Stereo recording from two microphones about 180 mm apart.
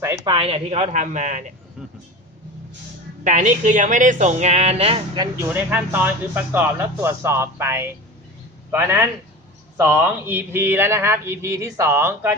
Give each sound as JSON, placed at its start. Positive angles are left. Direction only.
{"t": 0.0, "sound": "speech", "side_deg": -15}
{"t": 0.3, "sound": "speech", "side_deg": -30}
{"t": 3.2, "sound": "speech", "side_deg": -45}
{"t": 5.5, "sound": "speech", "side_deg": -10}